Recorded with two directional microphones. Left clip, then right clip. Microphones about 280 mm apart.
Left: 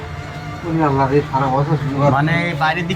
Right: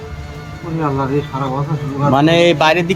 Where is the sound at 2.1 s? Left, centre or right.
Right.